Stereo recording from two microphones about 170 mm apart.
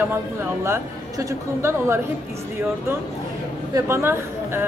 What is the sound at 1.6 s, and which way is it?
Speech, 15° right (ahead or behind).